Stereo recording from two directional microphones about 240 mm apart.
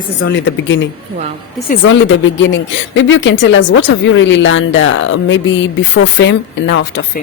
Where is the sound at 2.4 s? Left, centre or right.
Left.